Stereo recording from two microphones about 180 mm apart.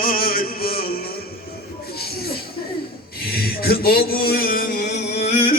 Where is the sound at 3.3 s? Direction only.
60° left (ahead or behind).